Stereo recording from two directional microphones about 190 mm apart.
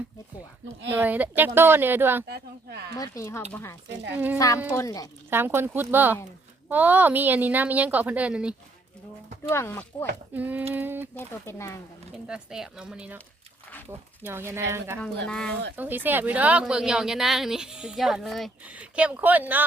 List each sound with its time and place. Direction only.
0.9 s a woman's voice: 10° right (ahead or behind)
2.2 s speech: 60° right (ahead or behind)
3.0 s speech: 15° left (ahead or behind)
4.1 s a woman's voice: 10° right (ahead or behind)
4.4 s speech: 15° left (ahead or behind)
5.3 s a woman's voice: 10° right (ahead or behind)
9.5 s speech: 15° left (ahead or behind)
10.3 s a woman's voice: 10° right (ahead or behind)
11.1 s speech: 15° left (ahead or behind)
12.1 s a woman's voice: 5° right (ahead or behind)
14.2 s a woman's voice: 10° right (ahead or behind)
15.3 s a woman's voice: 5° left (ahead or behind)
15.7 s a woman's voice: 10° right (ahead or behind)